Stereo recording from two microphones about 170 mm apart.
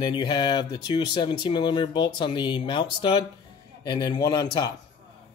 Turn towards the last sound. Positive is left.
turn(degrees=25)  # may be behind; listen again after turning